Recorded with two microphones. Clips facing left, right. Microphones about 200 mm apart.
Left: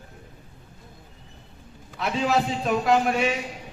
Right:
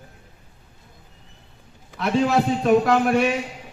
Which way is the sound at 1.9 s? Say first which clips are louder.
Right 4 dB; centre (ahead or behind).